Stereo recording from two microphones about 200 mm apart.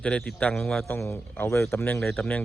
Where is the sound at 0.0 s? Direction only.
5° left (ahead or behind).